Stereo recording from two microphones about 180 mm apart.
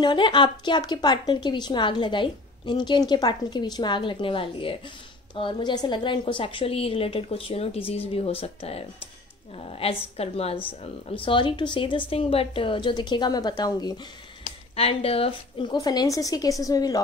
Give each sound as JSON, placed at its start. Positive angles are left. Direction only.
{"t": 0.0, "sound": "a woman's voice", "side_deg": 25}
{"t": 14.4, "sound": "a woman's voice", "side_deg": 30}